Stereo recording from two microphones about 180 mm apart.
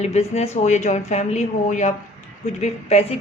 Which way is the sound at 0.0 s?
35° left (ahead or behind).